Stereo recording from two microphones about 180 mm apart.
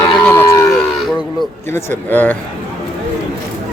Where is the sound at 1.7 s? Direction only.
10° left (ahead or behind).